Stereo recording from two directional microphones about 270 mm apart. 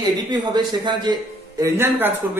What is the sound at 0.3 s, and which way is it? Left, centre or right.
A man's voice, centre.